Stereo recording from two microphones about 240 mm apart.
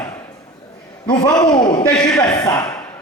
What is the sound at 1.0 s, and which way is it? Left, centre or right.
A man's voice, centre.